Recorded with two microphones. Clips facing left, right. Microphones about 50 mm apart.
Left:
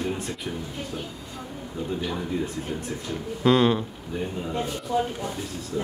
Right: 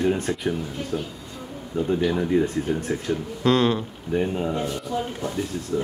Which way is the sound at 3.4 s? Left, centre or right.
Centre.